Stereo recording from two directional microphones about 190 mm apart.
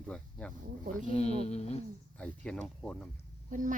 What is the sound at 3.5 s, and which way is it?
Speech, 45° right (ahead or behind).